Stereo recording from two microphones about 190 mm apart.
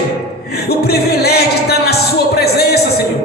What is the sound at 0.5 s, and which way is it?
Music, 55° left (ahead or behind).